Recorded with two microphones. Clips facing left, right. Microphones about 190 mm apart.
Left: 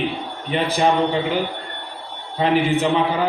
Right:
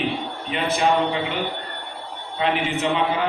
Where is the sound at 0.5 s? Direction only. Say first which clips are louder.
Left 3 dB; 35° left (ahead or behind).